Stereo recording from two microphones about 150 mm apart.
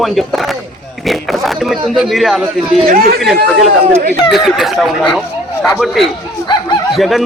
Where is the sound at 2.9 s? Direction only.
80° right.